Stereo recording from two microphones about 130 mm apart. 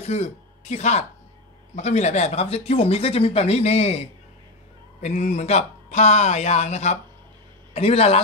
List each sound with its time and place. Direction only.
0.0 s speech: 60° left (ahead or behind)
5.0 s speech: 65° left (ahead or behind)